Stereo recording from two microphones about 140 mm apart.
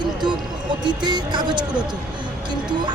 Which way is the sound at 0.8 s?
30° right (ahead or behind).